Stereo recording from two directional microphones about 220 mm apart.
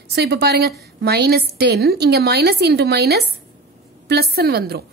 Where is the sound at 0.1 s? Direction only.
50° right (ahead or behind).